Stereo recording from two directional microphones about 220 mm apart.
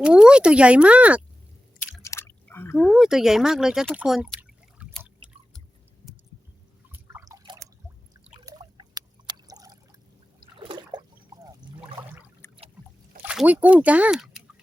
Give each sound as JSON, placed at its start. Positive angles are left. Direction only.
{"t": 0.0, "sound": "speech", "side_deg": -5}
{"t": 2.0, "sound": "a sound", "side_deg": 15}
{"t": 2.9, "sound": "speech", "side_deg": -5}
{"t": 6.9, "sound": "drip", "side_deg": -10}
{"t": 8.4, "sound": "a sound", "side_deg": -20}
{"t": 10.6, "sound": "trickle", "side_deg": -20}
{"t": 12.4, "sound": "boat", "side_deg": 10}
{"t": 13.2, "sound": "speech", "side_deg": -5}